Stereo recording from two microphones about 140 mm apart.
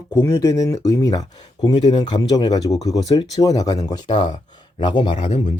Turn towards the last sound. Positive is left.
turn(degrees=40)  # may be behind; listen again after turning